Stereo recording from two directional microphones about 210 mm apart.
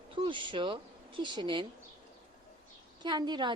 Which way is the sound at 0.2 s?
25° right (ahead or behind).